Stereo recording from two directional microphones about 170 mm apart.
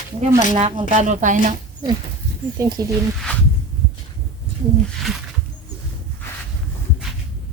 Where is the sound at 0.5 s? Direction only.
30° right (ahead or behind).